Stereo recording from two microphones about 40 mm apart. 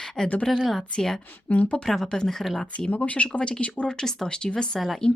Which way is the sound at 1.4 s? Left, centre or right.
Left.